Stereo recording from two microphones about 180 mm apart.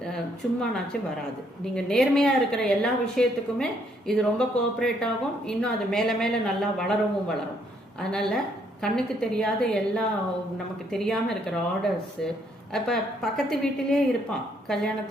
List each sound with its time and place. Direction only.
0.6 s a woman's voice: centre (ahead or behind)